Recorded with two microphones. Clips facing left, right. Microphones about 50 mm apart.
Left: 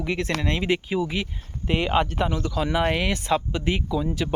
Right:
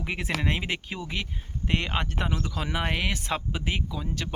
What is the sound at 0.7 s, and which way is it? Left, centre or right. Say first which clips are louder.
Speech: left 9 dB; centre.